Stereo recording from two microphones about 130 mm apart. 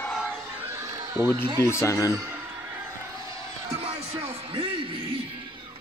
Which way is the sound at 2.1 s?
20° right (ahead or behind).